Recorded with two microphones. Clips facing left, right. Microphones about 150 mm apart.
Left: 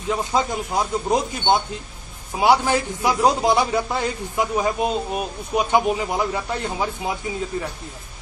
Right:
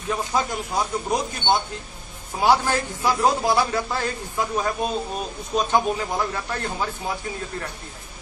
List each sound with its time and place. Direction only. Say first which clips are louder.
0.1 s a man's voice: left 2 dB; 20° left (ahead or behind)